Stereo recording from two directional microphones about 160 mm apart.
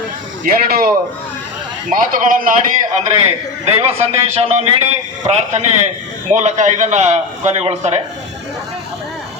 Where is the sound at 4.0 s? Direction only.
40° right (ahead or behind).